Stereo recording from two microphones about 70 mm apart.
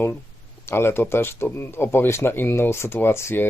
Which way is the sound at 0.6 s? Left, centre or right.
Left.